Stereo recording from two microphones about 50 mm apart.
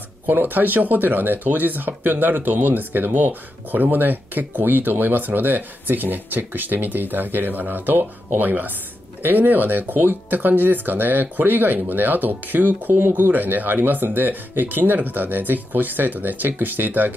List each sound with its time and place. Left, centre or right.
0.3 s speech: right